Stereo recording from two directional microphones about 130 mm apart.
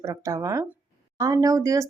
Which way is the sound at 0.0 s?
25° right (ahead or behind).